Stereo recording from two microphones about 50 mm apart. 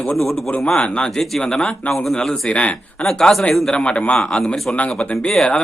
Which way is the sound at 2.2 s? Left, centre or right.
Centre.